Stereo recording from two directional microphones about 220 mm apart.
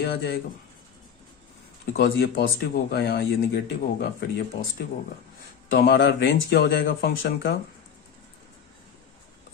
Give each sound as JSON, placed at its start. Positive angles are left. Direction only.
{"t": 0.0, "sound": "speech", "side_deg": 50}
{"t": 1.9, "sound": "speech", "side_deg": 45}
{"t": 5.7, "sound": "speech", "side_deg": 45}